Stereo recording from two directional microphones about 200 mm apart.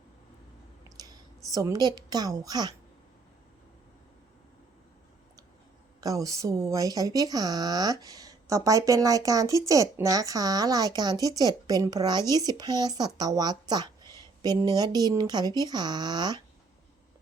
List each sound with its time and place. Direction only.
0.9 s a sound: 20° right (ahead or behind)
1.5 s speech: 15° right (ahead or behind)
6.0 s speech: 15° right (ahead or behind)